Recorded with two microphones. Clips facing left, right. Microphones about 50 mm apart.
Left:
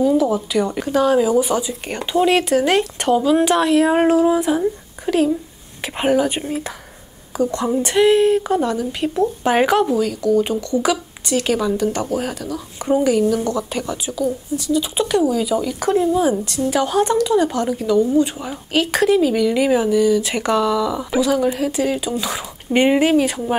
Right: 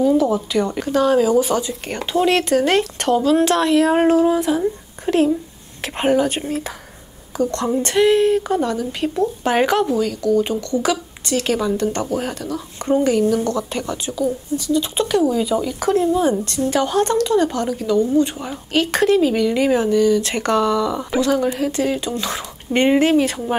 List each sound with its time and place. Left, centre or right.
0.0 s speech: centre
5.1 s speech: centre
11.7 s speech: centre
12.0 s speech: centre
13.4 s speech: centre
13.7 s speech: centre